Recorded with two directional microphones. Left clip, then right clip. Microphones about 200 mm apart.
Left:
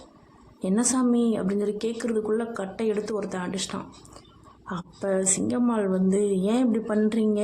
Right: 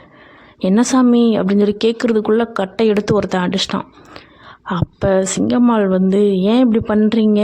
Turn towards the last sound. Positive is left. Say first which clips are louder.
# right 9 dB
turn(degrees=-40)  # may be behind; listen again after turning